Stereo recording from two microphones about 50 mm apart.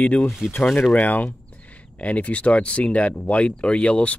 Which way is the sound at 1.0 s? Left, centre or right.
Left.